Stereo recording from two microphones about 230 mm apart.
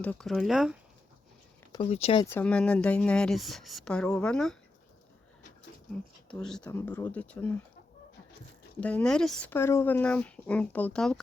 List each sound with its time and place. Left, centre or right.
0.0 s speech: centre
1.7 s speech: left
2.3 s speech: centre
6.4 s speech: centre
8.8 s speech: centre